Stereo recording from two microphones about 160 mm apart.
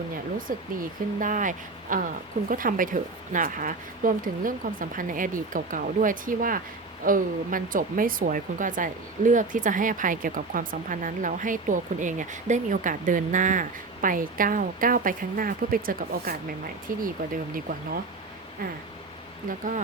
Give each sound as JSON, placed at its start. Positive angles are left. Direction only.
{"t": 0.3, "sound": "speech", "side_deg": -60}
{"t": 19.5, "sound": "speech", "side_deg": -55}